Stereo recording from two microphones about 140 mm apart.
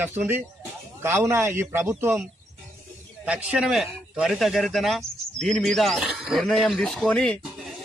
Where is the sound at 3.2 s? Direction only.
10° right (ahead or behind); by 7.4 s 10° left (ahead or behind).